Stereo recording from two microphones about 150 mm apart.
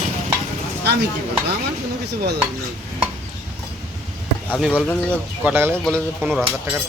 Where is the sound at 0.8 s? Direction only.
90° right.